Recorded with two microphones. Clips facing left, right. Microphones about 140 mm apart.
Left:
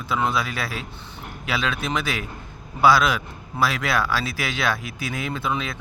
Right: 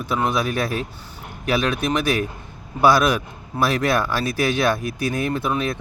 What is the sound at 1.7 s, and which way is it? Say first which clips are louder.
Speech: right 5 dB; 15° right (ahead or behind).